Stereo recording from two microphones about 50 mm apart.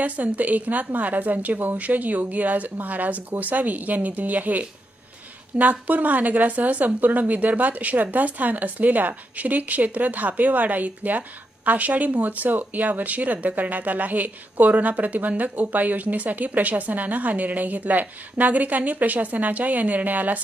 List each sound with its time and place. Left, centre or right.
0.0 s speech: right